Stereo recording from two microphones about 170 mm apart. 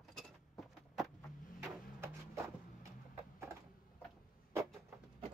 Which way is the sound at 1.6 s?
15° right (ahead or behind).